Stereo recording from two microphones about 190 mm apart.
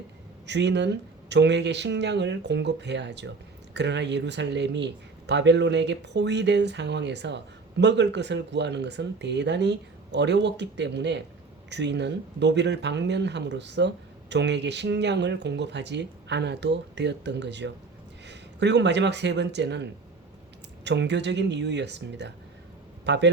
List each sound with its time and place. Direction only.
0.4 s speech: 65° right (ahead or behind)